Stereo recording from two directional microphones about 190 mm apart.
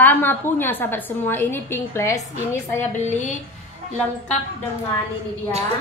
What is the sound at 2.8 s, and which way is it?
Speech, 40° left (ahead or behind).